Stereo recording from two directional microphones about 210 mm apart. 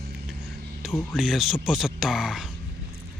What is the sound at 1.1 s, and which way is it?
Speech, centre (ahead or behind).